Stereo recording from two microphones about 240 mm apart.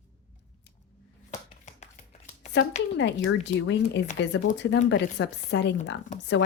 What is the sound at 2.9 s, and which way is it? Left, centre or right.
Speech, left.